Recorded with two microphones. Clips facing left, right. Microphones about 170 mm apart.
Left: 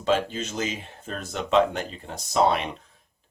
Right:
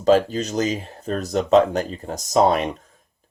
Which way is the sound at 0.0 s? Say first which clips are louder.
Right 7 dB; 40° right (ahead or behind).